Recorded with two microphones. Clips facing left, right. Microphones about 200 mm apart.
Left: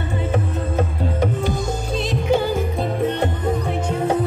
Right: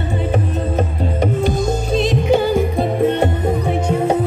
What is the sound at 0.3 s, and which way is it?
Music, 15° right (ahead or behind).